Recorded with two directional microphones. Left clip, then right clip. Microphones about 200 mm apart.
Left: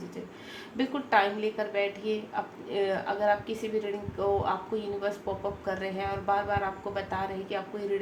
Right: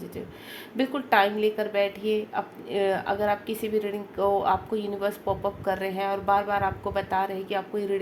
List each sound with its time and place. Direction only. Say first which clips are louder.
0.8 s a woman's voice: right 3 dB; 50° right (ahead or behind)